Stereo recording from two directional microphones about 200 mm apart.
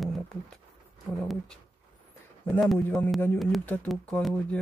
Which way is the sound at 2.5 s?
5° left (ahead or behind).